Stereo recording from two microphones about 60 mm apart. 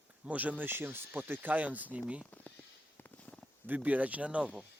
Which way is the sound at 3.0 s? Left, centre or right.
Left.